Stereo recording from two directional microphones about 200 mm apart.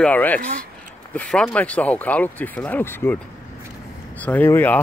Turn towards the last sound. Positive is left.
turn(degrees=10)  # may be behind; listen again after turning